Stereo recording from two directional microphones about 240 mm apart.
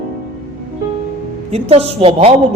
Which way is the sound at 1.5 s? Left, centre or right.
Right.